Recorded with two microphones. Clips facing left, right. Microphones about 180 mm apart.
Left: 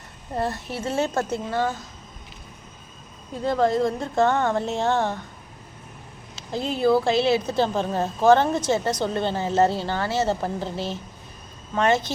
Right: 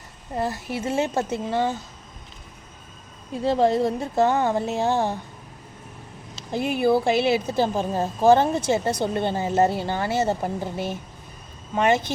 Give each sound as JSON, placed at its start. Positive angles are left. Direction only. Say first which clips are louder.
{"t": 0.3, "sound": "a woman's voice", "louder": "even", "side_deg": -5}
{"t": 0.9, "sound": "a woman's voice", "louder": "even", "side_deg": -15}
{"t": 3.4, "sound": "a woman's voice", "louder": "right 1 dB", "side_deg": -15}
{"t": 4.3, "sound": "a woman's voice", "louder": "even", "side_deg": -15}
{"t": 6.5, "sound": "a woman's voice", "louder": "even", "side_deg": -15}
{"t": 11.7, "sound": "a woman's voice", "louder": "right 1 dB", "side_deg": -10}